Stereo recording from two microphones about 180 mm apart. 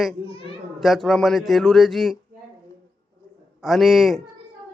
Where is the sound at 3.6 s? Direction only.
Centre (ahead or behind).